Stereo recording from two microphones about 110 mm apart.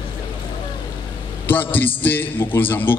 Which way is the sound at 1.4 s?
15° left (ahead or behind).